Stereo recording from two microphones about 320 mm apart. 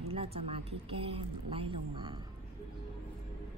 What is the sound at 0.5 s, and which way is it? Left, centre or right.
Speech, centre.